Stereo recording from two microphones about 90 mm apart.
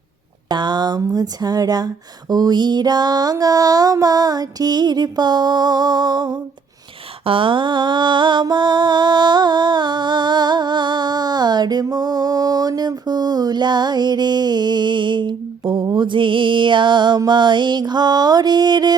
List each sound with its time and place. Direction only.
0.4 s speech: 55° right (ahead or behind)
1.0 s mantra: 45° right (ahead or behind)
7.3 s mantra: 75° right (ahead or behind); by 18.9 s 50° right (ahead or behind)